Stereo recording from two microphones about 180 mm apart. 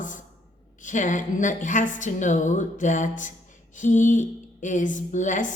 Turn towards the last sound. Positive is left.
turn(degrees=45)  # may be behind; listen again after turning